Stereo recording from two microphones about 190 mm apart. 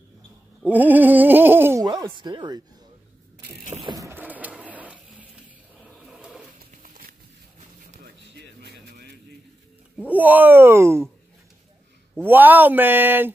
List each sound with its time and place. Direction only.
0.6 s speech: 10° right (ahead or behind)
3.8 s printer: 15° right (ahead or behind)
5.8 s a sound: 5° right (ahead or behind)
6.8 s a sound: 45° right (ahead or behind)
9.9 s speech: 10° right (ahead or behind)
12.3 s speech: 10° right (ahead or behind)